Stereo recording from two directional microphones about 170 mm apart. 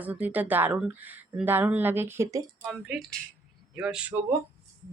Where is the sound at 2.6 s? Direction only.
Centre (ahead or behind).